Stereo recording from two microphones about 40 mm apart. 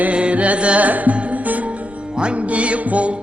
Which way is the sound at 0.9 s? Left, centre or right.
Right.